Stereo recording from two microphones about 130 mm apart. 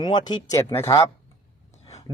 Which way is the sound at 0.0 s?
35° left (ahead or behind).